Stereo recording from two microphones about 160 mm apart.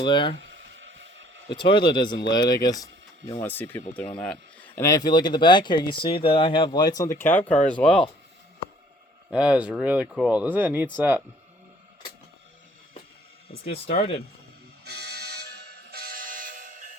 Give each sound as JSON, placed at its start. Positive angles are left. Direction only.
{"t": 0.0, "sound": "speech", "side_deg": 30}
{"t": 1.5, "sound": "speech", "side_deg": 30}
{"t": 3.4, "sound": "speech", "side_deg": 10}
{"t": 9.3, "sound": "speech", "side_deg": -5}
{"t": 13.7, "sound": "speech", "side_deg": 40}
{"t": 15.1, "sound": "music", "side_deg": -85}